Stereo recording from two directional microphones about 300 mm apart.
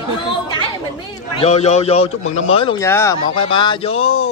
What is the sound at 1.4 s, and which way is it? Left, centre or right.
A man's voice, left.